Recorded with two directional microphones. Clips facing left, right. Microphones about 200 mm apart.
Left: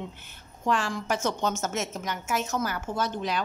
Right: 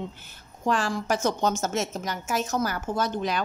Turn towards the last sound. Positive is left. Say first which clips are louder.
# right 2 dB
turn(degrees=-45)  # may be behind; listen again after turning